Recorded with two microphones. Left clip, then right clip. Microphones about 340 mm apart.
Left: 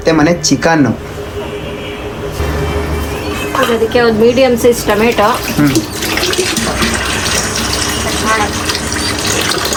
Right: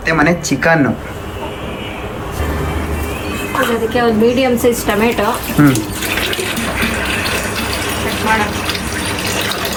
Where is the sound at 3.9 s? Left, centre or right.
Centre.